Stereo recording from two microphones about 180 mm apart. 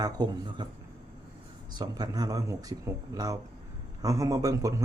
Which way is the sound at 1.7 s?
25° right (ahead or behind).